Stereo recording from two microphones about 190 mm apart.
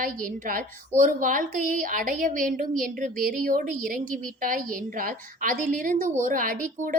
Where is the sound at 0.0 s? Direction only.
45° right (ahead or behind).